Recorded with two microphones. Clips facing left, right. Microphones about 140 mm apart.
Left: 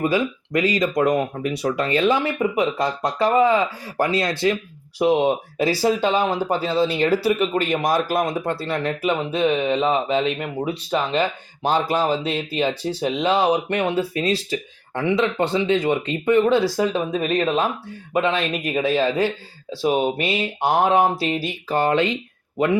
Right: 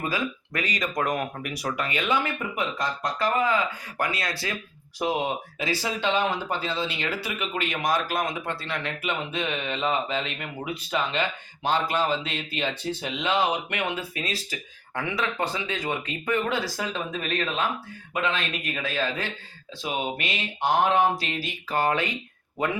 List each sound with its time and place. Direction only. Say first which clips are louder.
0.1 s speech: left 8 dB; 25° left (ahead or behind)